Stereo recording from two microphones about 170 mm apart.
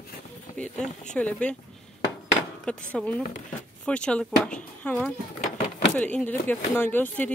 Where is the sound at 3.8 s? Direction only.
5° left (ahead or behind).